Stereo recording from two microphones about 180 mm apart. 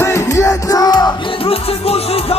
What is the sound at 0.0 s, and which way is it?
Music, 15° left (ahead or behind).